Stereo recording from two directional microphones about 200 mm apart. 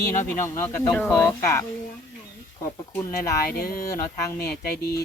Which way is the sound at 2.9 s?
15° left (ahead or behind).